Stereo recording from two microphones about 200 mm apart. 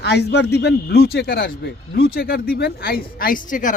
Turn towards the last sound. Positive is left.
turn(degrees=40)  # may be behind; listen again after turning